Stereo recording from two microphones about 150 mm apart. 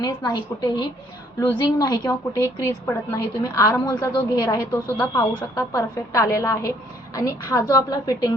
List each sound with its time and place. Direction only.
0.0 s a woman's voice: 25° left (ahead or behind)
4.9 s a woman's voice: 10° left (ahead or behind)